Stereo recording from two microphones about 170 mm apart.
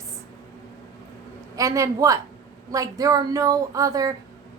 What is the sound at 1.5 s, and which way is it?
A woman's voice, 20° right (ahead or behind).